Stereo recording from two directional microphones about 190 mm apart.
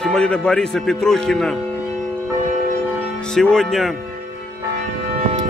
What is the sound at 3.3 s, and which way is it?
Speech, 5° left (ahead or behind).